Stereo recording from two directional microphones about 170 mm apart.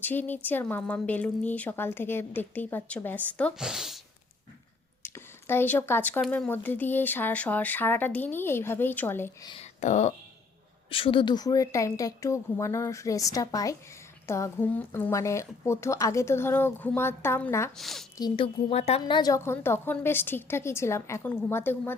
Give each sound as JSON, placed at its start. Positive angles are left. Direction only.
{"t": 0.0, "sound": "a woman's voice", "side_deg": 10}
{"t": 5.0, "sound": "a woman's voice", "side_deg": 15}
{"t": 9.5, "sound": "speech", "side_deg": 40}
{"t": 10.8, "sound": "a woman's voice", "side_deg": 30}
{"t": 17.7, "sound": "speech", "side_deg": 0}
{"t": 18.2, "sound": "a woman's voice", "side_deg": 30}